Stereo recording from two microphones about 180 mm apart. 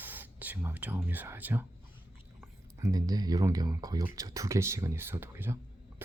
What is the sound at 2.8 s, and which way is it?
Speech, 20° right (ahead or behind).